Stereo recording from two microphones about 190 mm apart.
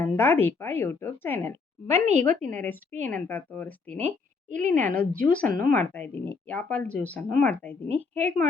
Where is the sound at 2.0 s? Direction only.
40° right (ahead or behind).